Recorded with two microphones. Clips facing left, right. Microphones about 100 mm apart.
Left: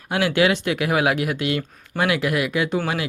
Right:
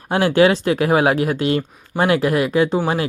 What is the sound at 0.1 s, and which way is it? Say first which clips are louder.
Speech: right 5 dB; 35° right (ahead or behind).